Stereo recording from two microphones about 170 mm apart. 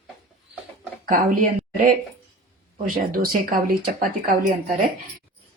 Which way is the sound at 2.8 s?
55° right (ahead or behind).